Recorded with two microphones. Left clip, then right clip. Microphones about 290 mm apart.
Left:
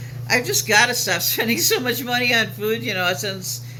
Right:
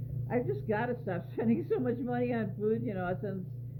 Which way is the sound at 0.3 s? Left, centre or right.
Centre.